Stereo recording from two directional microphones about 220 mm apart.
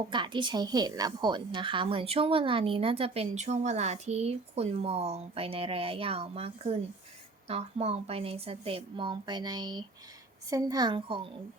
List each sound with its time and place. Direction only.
0.1 s a woman's voice: 20° right (ahead or behind)